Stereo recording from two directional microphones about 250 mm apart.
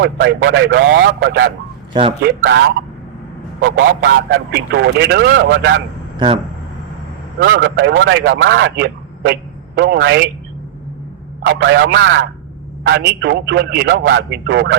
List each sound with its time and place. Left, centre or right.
0.0 s a man's voice: right
1.9 s speech: right
2.2 s a man's voice: right
6.1 s speech: centre
7.3 s a man's voice: right
11.4 s a man's voice: right